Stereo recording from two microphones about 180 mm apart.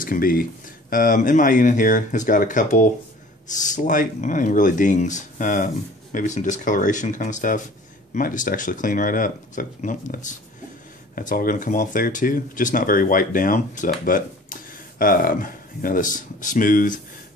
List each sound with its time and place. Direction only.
0.0 s speech: 50° left (ahead or behind)